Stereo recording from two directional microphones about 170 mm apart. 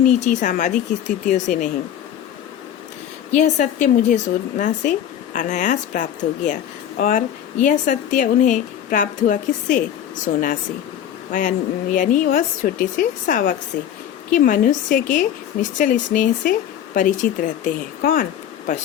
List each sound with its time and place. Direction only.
0.2 s speech: 45° left (ahead or behind)
3.3 s speech: 45° left (ahead or behind)